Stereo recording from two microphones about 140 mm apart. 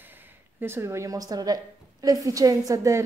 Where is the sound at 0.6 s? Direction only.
15° right (ahead or behind).